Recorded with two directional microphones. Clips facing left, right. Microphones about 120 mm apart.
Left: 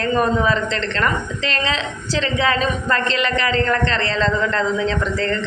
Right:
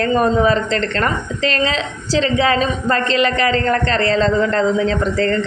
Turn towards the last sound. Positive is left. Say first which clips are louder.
# right 4 dB
turn(degrees=-40)  # may be behind; listen again after turning